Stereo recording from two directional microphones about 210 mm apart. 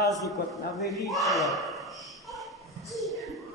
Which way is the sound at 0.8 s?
15° left (ahead or behind).